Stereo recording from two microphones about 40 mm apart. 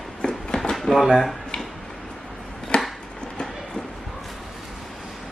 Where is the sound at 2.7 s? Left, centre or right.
Left.